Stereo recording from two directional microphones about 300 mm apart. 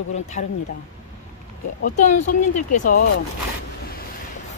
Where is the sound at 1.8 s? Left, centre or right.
Left.